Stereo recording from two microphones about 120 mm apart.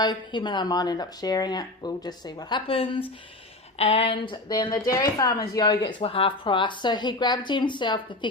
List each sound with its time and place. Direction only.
0.0 s speech: 40° left (ahead or behind)
6.0 s speech: 50° left (ahead or behind)